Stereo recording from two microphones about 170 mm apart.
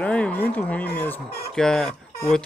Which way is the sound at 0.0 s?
5° left (ahead or behind).